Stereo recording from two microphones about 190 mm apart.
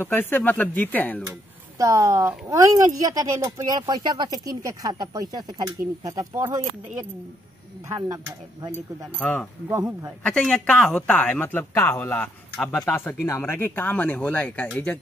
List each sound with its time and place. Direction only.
0.0 s speech: 10° left (ahead or behind)
1.8 s a woman's voice: 15° right (ahead or behind)
9.2 s speech: 5° left (ahead or behind)
9.7 s a man's voice: 15° right (ahead or behind)
10.2 s speech: 5° left (ahead or behind)